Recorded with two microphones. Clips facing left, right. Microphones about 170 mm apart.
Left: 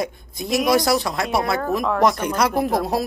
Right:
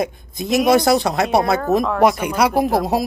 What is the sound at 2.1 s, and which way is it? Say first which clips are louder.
Speech: right 3 dB; 10° right (ahead or behind).